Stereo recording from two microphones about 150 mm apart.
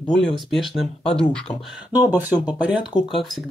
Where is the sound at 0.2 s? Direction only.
Centre (ahead or behind).